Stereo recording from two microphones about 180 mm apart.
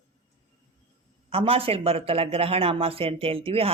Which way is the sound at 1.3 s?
30° right (ahead or behind).